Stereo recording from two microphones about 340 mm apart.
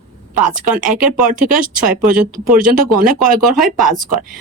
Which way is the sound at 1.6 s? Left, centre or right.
Right.